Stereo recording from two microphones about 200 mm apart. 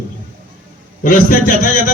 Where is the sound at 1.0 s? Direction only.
40° left (ahead or behind).